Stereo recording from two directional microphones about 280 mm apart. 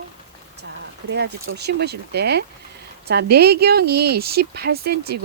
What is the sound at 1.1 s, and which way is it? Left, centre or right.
Speech, right.